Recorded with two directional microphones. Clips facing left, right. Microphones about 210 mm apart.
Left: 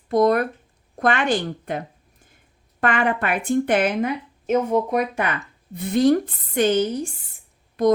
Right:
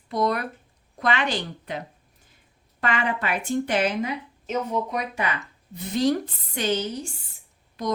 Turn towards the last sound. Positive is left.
turn(degrees=55)  # may be behind; listen again after turning